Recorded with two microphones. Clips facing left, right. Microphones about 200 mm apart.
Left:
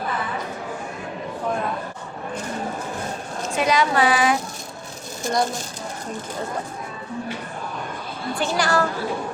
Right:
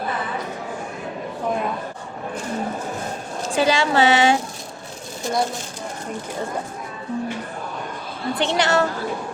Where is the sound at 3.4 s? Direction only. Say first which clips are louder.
Right 1 dB; 30° right (ahead or behind).